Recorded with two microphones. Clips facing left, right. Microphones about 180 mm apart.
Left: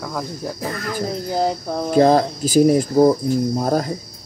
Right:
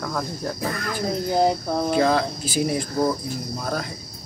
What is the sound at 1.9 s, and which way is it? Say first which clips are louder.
Speech: left 8 dB; 40° left (ahead or behind).